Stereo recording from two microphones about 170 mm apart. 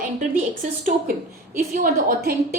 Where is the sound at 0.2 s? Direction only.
50° right (ahead or behind).